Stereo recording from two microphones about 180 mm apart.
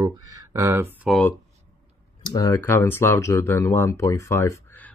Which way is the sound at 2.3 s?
15° left (ahead or behind).